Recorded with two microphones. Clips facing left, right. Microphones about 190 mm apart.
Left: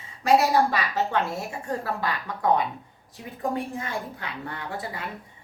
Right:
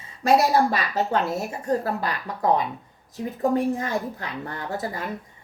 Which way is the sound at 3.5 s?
40° right (ahead or behind).